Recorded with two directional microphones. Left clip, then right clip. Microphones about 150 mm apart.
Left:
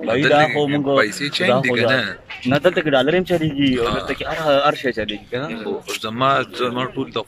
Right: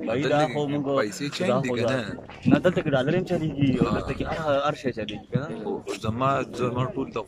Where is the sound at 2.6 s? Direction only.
Centre (ahead or behind).